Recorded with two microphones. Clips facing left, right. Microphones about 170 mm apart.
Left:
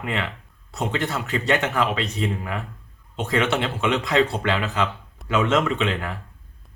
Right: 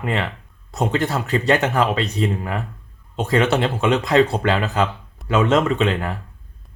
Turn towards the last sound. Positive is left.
turn(degrees=-40)  # may be behind; listen again after turning